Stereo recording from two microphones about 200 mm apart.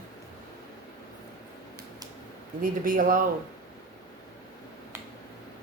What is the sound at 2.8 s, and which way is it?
Speech, 45° right (ahead or behind).